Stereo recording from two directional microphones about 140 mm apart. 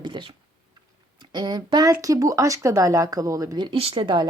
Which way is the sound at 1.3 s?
30° right (ahead or behind).